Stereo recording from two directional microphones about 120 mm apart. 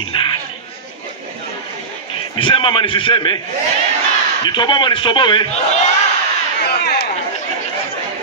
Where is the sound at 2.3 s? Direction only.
45° left (ahead or behind).